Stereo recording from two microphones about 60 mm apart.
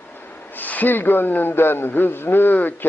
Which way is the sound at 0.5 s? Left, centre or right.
Left.